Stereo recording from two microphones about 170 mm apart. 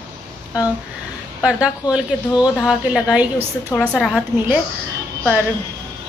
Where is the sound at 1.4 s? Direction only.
5° right (ahead or behind).